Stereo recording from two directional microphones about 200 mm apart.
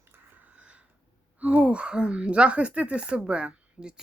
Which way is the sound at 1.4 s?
5° right (ahead or behind).